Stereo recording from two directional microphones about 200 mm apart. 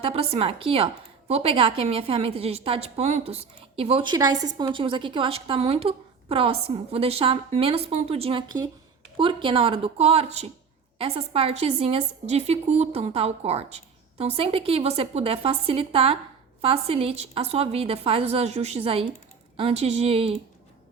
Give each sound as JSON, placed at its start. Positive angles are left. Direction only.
{"t": 0.0, "sound": "a woman's voice", "side_deg": -30}